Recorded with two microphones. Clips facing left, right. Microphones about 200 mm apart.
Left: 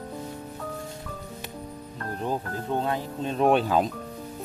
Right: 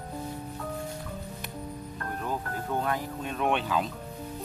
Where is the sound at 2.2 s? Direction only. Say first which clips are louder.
Left 5 dB; 25° left (ahead or behind); by 3.9 s 40° left (ahead or behind).